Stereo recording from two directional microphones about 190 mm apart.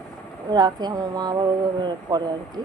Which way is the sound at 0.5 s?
20° right (ahead or behind).